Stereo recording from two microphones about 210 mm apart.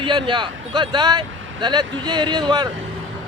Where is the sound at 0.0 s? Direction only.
25° right (ahead or behind).